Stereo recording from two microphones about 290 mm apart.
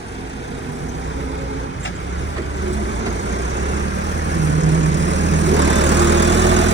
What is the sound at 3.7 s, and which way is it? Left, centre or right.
Vehicle, right.